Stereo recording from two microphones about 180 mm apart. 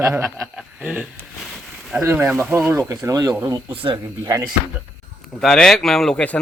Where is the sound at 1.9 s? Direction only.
10° right (ahead or behind).